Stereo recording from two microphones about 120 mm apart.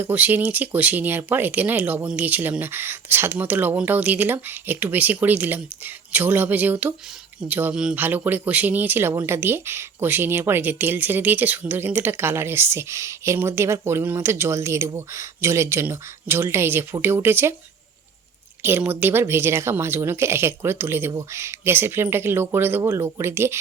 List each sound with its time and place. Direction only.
0.0 s speech: 15° right (ahead or behind)
18.6 s speech: 15° right (ahead or behind)